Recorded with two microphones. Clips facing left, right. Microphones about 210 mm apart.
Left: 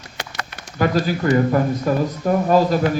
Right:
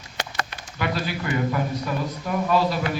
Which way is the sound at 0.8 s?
40° left (ahead or behind).